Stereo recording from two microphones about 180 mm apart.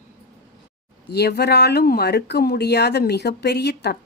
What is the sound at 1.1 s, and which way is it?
Speech, 65° left (ahead or behind).